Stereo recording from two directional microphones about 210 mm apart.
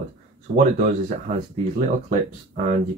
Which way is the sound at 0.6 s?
35° right (ahead or behind).